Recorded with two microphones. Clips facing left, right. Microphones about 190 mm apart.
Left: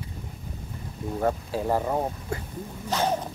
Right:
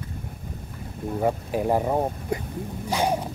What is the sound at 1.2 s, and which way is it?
Speech, 15° right (ahead or behind).